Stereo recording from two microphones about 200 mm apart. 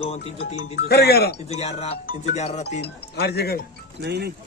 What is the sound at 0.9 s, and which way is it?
Speech, 55° left (ahead or behind).